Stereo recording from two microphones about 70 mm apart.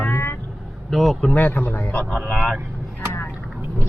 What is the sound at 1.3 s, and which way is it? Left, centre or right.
Speech, left.